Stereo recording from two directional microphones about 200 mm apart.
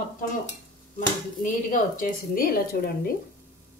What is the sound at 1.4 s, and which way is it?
A woman's voice, 40° left (ahead or behind).